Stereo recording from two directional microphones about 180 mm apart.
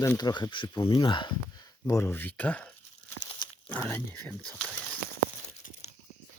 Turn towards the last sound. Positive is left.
turn(degrees=35)  # may be behind; listen again after turning